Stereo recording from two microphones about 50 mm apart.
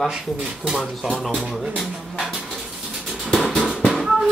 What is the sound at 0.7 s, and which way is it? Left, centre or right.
Speech, centre.